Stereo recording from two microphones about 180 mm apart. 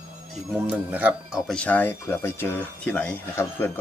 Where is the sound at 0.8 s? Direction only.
10° right (ahead or behind); by 3.7 s 10° left (ahead or behind).